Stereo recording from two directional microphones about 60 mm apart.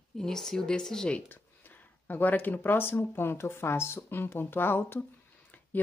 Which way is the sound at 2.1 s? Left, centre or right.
Left.